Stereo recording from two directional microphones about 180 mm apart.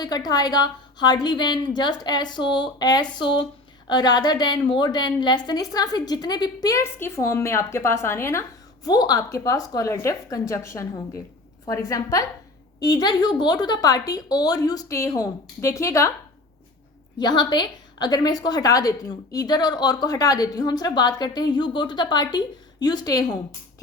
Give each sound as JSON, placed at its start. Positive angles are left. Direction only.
{"t": 0.3, "sound": "a woman's voice", "side_deg": 20}
{"t": 17.2, "sound": "a woman's voice", "side_deg": 25}